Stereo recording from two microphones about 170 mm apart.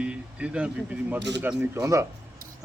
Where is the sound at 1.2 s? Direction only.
90° right.